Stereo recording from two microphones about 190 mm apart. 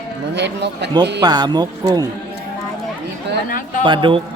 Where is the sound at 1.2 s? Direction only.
20° right (ahead or behind).